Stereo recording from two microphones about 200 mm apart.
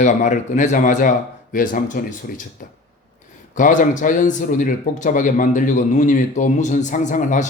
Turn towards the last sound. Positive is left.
turn(degrees=40)  # may be behind; listen again after turning